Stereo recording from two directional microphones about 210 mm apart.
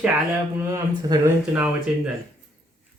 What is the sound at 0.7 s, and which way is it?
Speech, 10° right (ahead or behind).